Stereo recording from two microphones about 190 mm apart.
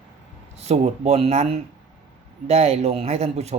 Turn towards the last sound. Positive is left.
turn(degrees=-35)  # may be behind; listen again after turning